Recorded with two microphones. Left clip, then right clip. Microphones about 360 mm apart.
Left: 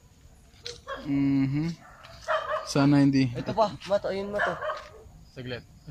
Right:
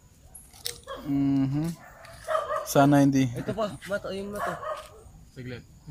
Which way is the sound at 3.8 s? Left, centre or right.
Left.